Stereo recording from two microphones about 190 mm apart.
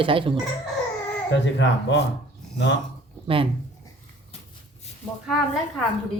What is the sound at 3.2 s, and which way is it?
Speech, 30° right (ahead or behind).